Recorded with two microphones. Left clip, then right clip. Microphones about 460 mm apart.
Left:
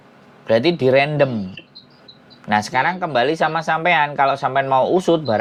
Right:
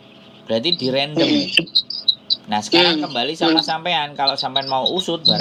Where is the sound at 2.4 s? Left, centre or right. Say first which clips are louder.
Right 1 dB; left.